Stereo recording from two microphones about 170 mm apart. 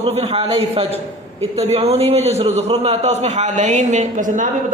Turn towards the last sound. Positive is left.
turn(degrees=-50)  # may be behind; listen again after turning